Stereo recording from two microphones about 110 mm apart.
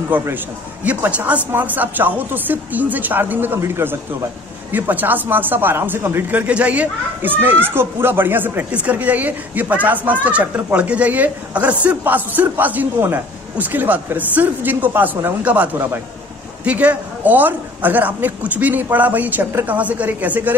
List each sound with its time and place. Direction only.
0.1 s speech: 15° right (ahead or behind)